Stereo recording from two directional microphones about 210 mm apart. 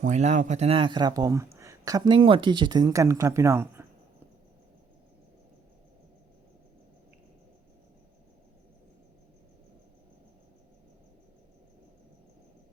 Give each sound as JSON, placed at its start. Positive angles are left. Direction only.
{"t": 0.0, "sound": "a woman's voice", "side_deg": -35}